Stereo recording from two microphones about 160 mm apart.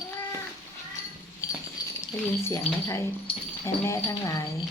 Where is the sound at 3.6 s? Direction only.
20° left (ahead or behind).